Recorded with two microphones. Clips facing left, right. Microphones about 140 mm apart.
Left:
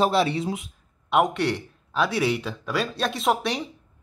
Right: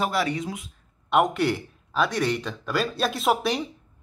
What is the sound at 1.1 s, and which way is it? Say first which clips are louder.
A man's voice: even; centre (ahead or behind).